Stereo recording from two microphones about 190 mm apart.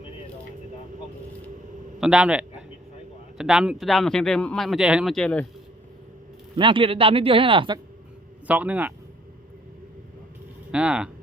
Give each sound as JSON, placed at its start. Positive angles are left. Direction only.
{"t": 2.0, "sound": "speech", "side_deg": -5}
{"t": 6.6, "sound": "a man's voice", "side_deg": -25}
{"t": 8.4, "sound": "speech", "side_deg": -10}
{"t": 10.7, "sound": "speech", "side_deg": -5}